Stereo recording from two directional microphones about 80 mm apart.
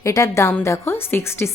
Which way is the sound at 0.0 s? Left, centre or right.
Left.